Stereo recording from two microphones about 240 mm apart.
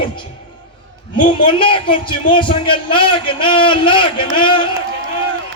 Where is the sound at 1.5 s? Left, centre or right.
Left.